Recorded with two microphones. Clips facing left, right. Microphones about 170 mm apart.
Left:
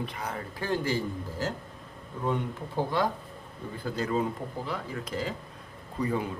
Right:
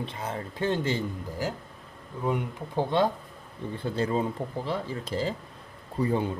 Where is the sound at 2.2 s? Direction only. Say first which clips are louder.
Right 1 dB; 10° right (ahead or behind).